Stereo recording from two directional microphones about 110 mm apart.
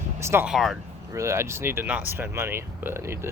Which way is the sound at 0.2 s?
25° right (ahead or behind).